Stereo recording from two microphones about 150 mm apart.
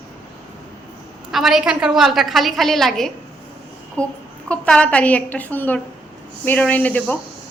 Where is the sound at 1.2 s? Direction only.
Centre (ahead or behind).